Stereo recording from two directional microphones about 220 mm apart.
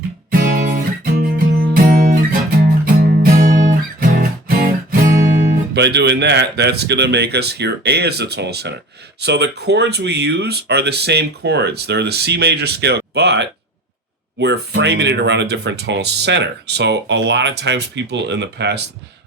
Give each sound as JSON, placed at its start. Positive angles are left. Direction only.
{"t": 0.4, "sound": "guitar", "side_deg": -40}
{"t": 1.2, "sound": "music", "side_deg": -40}
{"t": 5.7, "sound": "speech", "side_deg": -50}